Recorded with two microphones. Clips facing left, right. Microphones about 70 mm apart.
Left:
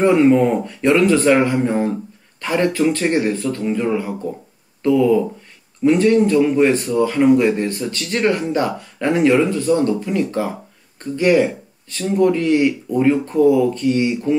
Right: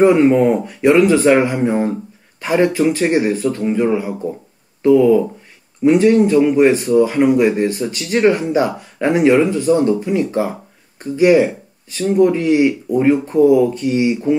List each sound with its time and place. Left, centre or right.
0.0 s speech: centre